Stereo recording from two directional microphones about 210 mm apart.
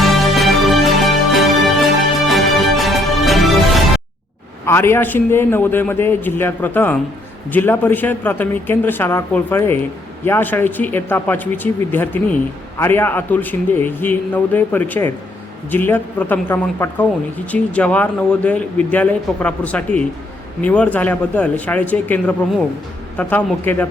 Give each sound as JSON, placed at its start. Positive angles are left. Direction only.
{"t": 0.0, "sound": "music", "side_deg": 0}
{"t": 4.6, "sound": "speech", "side_deg": 10}